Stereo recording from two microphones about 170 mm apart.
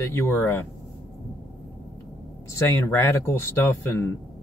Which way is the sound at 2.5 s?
15° left (ahead or behind).